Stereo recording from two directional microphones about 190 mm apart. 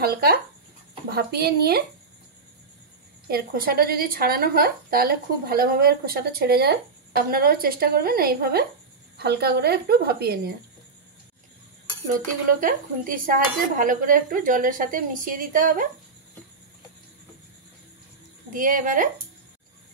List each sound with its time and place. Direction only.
0.0 s a woman's voice: 55° right (ahead or behind)
3.3 s a woman's voice: 50° right (ahead or behind)
12.4 s a woman's voice: 45° right (ahead or behind)
18.5 s a woman's voice: 45° right (ahead or behind)